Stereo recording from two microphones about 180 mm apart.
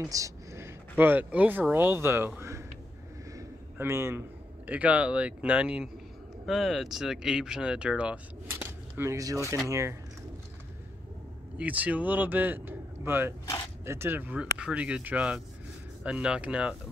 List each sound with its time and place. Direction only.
0.0 s speech: 15° right (ahead or behind)
3.3 s a sound: 15° right (ahead or behind)
4.6 s speech: 10° right (ahead or behind)
11.5 s speech: 10° right (ahead or behind)